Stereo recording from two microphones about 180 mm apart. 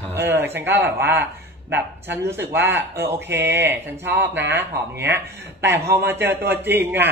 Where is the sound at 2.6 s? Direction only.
15° right (ahead or behind).